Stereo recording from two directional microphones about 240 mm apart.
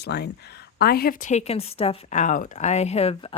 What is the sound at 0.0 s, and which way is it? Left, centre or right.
A woman's voice, left.